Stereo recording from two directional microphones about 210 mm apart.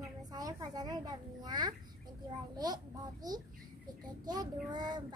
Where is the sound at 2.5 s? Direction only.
20° right (ahead or behind).